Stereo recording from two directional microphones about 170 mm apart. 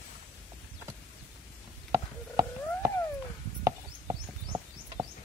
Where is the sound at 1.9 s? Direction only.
20° right (ahead or behind).